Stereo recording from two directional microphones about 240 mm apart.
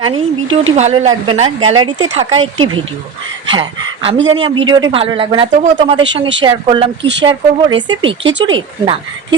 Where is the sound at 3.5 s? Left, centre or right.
Centre.